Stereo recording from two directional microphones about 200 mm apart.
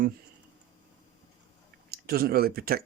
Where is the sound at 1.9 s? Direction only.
50° right (ahead or behind).